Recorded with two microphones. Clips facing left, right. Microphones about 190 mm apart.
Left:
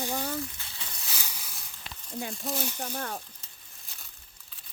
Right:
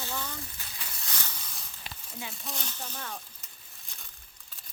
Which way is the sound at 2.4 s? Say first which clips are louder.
Left 8 dB; 5° left (ahead or behind).